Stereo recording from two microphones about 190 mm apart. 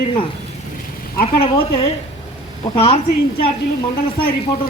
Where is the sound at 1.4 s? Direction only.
30° left (ahead or behind).